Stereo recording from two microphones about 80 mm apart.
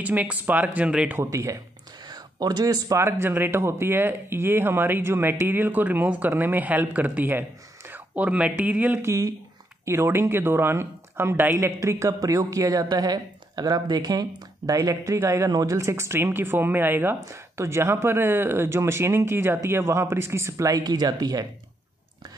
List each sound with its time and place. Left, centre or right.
0.0 s speech: centre
1.2 s speech: right
2.0 s a sound: right
3.0 s speech: right
9.0 s speech: right
14.7 s speech: right
20.8 s speech: right